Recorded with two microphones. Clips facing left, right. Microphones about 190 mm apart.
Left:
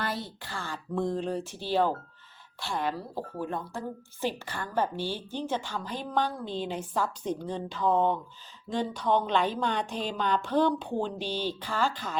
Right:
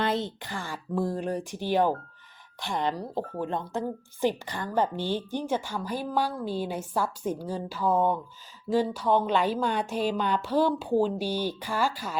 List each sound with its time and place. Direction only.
0.0 s a woman's voice: 20° right (ahead or behind)
3.0 s speech: 40° right (ahead or behind)
3.4 s a woman's voice: 20° right (ahead or behind)